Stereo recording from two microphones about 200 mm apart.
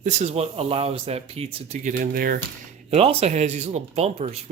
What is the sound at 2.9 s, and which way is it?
Speech, 30° right (ahead or behind).